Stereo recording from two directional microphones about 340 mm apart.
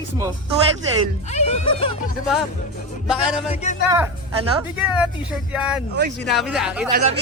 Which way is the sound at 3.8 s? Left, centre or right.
Centre.